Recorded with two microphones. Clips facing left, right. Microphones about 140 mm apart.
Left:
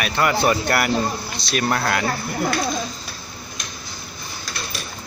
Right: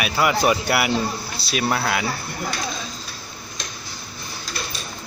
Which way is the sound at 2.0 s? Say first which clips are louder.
Left 5 dB; 55° left (ahead or behind).